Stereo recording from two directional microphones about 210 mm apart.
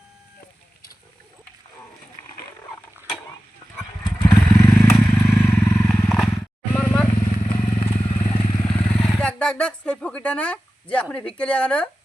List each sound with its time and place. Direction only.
4.2 s vehicle: 10° left (ahead or behind)
5.9 s wild animals: centre (ahead or behind)
7.4 s motorcycle: 25° left (ahead or behind)
8.4 s vehicle: 5° left (ahead or behind)
10.9 s a woman's voice: 5° left (ahead or behind)